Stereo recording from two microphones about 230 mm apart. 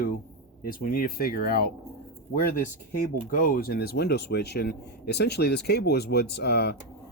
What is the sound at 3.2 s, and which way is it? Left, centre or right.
Speech, left.